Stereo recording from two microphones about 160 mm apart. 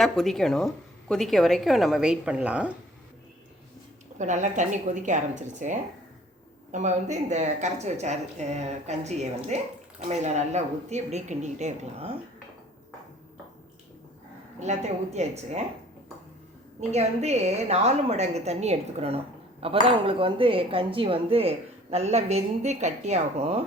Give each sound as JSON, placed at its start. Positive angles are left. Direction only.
{"t": 0.0, "sound": "a woman's voice", "side_deg": 0}
{"t": 4.2, "sound": "a woman's voice", "side_deg": -50}
{"t": 14.6, "sound": "a woman's voice", "side_deg": -45}
{"t": 16.9, "sound": "a woman's voice", "side_deg": -45}